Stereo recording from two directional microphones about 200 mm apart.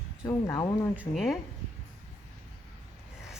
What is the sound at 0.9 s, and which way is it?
Speech, 5° right (ahead or behind).